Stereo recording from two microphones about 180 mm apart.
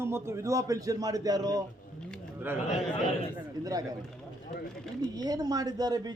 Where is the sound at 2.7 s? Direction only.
35° left (ahead or behind).